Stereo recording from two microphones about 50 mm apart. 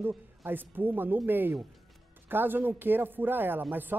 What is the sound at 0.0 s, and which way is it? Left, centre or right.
Speech, right.